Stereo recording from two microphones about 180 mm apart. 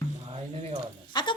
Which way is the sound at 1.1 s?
25° left (ahead or behind).